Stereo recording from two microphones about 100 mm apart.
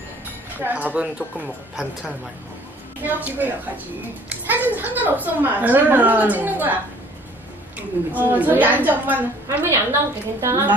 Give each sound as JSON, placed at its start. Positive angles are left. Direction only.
{"t": 0.6, "sound": "a woman's voice", "side_deg": -15}
{"t": 3.0, "sound": "a woman's voice", "side_deg": -15}